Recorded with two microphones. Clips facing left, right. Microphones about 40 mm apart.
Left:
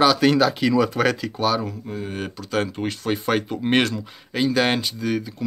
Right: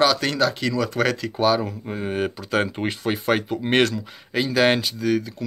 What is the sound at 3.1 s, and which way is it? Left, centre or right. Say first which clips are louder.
Speech: right 1 dB; centre.